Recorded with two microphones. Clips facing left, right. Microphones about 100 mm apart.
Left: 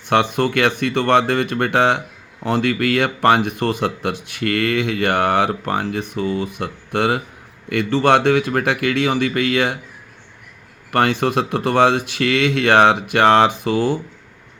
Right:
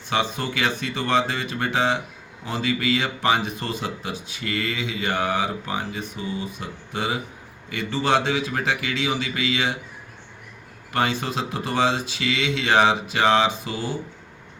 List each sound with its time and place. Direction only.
0.1 s speech: 60° left (ahead or behind)
10.9 s speech: 60° left (ahead or behind)